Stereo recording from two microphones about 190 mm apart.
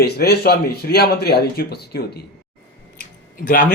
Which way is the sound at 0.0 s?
55° left (ahead or behind).